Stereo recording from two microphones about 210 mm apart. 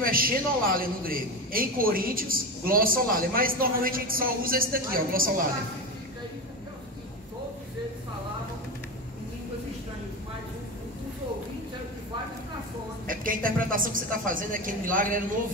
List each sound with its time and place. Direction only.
0.0 s a man's voice: 45° right (ahead or behind)
13.0 s a woman's voice: 40° right (ahead or behind)